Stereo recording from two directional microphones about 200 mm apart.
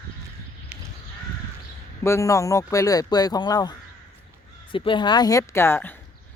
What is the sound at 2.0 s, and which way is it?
Speech, 15° left (ahead or behind).